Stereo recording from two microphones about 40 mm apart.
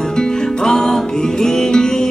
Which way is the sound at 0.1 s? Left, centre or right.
Centre.